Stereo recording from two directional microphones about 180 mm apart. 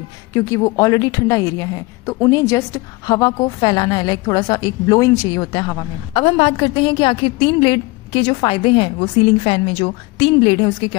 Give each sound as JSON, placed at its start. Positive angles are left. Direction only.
{"t": 0.3, "sound": "speech", "side_deg": 15}